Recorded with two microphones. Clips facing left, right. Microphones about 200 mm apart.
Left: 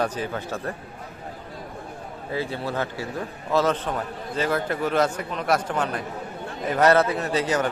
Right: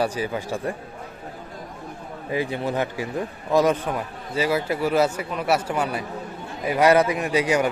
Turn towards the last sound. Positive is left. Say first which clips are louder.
# right 2 dB
turn(degrees=-10)  # may be behind; listen again after turning